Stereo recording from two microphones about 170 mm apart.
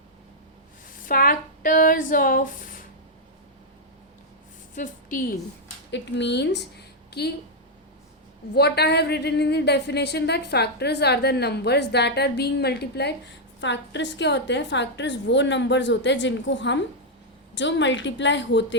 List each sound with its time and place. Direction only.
0.9 s speech: 55° left (ahead or behind)
4.7 s a woman's voice: 50° left (ahead or behind)
5.9 s a woman's voice: 90° left
7.2 s speech: 70° left (ahead or behind)
8.5 s speech: 70° left (ahead or behind)
13.6 s a woman's voice: 90° left